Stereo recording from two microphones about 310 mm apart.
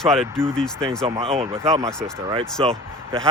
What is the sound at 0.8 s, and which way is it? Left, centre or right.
Speech, centre.